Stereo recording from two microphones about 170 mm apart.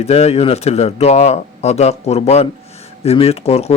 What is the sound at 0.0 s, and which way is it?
A man's voice, 40° left (ahead or behind).